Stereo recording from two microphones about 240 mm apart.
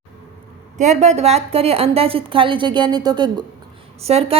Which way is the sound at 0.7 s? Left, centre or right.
Right.